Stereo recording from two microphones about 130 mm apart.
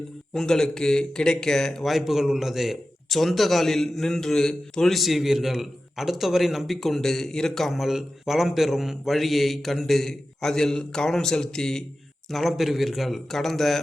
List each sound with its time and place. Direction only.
0.3 s speech: 5° left (ahead or behind)